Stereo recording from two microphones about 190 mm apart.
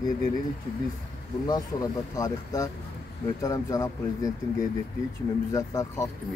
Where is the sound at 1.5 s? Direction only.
20° left (ahead or behind).